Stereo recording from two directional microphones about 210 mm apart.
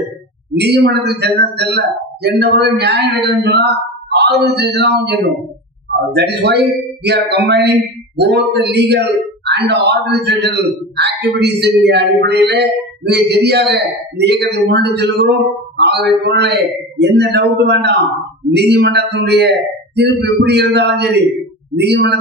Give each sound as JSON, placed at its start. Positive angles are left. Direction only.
{"t": 0.6, "sound": "a man's voice", "side_deg": -50}